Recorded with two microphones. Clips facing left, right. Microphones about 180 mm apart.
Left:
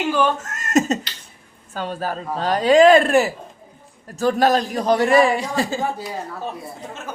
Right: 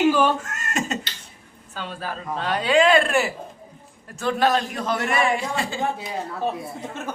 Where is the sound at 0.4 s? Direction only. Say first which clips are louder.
Left 9 dB; 40° left (ahead or behind).